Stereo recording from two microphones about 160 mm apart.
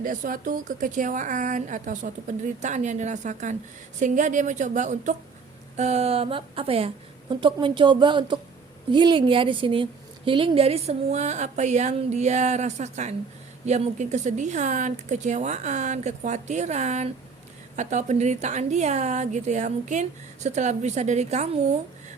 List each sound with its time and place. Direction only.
0.0 s a woman's voice: 55° right (ahead or behind)